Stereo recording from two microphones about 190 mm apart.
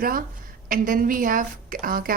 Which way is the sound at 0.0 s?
50° right (ahead or behind).